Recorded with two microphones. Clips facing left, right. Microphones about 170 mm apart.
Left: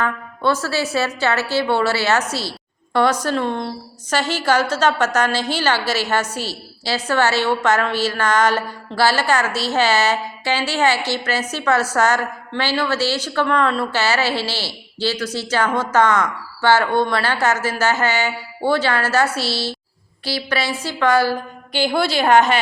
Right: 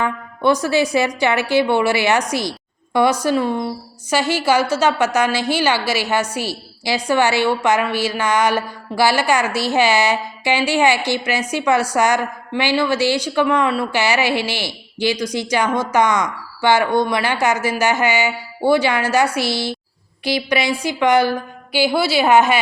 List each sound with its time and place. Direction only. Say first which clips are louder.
0.0 s a woman's voice: right 2 dB; 15° right (ahead or behind)
21.7 s a woman's voice: right 2 dB; 5° right (ahead or behind)